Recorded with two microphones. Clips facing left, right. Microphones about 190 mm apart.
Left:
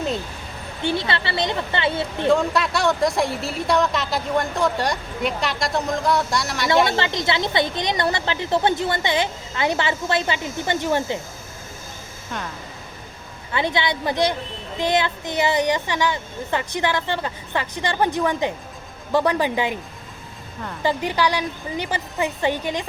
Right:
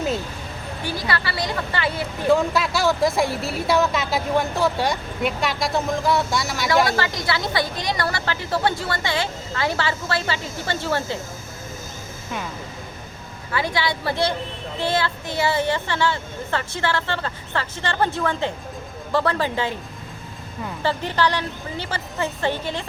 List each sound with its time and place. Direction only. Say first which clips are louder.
0.8 s speech: left 3 dB; 25° left (ahead or behind)
2.2 s speech: even; centre (ahead or behind)
6.8 s speech: left 1 dB; 25° left (ahead or behind)
13.5 s speech: left 1 dB; 20° left (ahead or behind)
20.8 s speech: left 1 dB; 15° left (ahead or behind)